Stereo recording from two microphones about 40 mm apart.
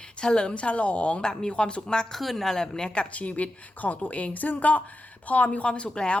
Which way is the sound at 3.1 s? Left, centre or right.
Left.